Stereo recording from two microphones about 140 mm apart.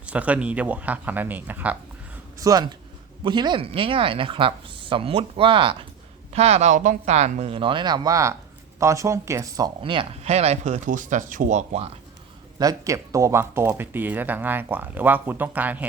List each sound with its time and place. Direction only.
0.0 s speech: 10° right (ahead or behind)
2.4 s speech: 25° right (ahead or behind)
6.3 s speech: 50° right (ahead or behind); by 9.7 s 25° right (ahead or behind)
9.8 s speech: 40° right (ahead or behind); by 11.9 s 55° right (ahead or behind)
12.5 s speech: 25° right (ahead or behind)